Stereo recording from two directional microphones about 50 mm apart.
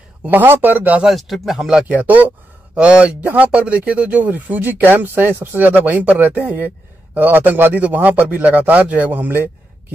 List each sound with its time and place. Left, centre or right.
0.3 s speech: right
1.1 s speech: centre
1.9 s speech: right